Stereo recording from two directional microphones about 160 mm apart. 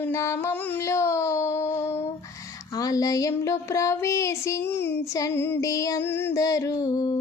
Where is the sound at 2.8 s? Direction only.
20° left (ahead or behind).